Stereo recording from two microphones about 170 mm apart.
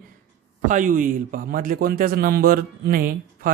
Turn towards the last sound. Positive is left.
turn(degrees=-60)  # may be behind; listen again after turning